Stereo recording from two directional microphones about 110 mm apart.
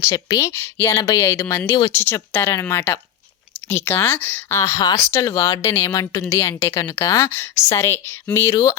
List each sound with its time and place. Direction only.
0.1 s a woman's voice: 35° left (ahead or behind)
0.5 s a woman's voice: 20° left (ahead or behind)